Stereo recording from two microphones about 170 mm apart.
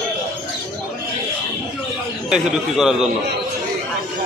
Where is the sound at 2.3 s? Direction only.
5° right (ahead or behind).